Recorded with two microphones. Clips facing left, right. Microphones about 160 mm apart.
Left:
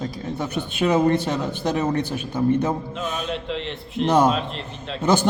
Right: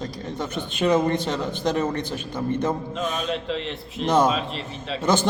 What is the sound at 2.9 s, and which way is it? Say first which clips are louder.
A man's voice: right 1 dB; centre (ahead or behind).